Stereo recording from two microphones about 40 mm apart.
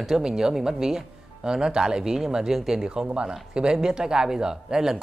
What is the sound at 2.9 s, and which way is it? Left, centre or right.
Speech, right.